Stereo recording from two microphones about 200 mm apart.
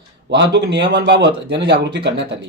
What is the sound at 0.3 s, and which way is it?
A man's voice, 60° right (ahead or behind).